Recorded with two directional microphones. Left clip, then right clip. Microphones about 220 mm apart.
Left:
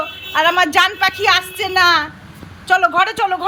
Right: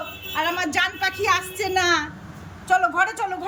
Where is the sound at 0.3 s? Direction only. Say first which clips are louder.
Left 10 dB; centre (ahead or behind).